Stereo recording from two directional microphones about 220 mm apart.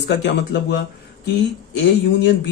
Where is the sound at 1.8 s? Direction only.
55° left (ahead or behind).